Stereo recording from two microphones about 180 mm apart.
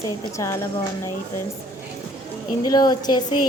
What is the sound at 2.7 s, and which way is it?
Speech, 20° left (ahead or behind).